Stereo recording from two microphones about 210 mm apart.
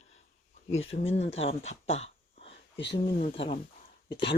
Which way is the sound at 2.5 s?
55° left (ahead or behind).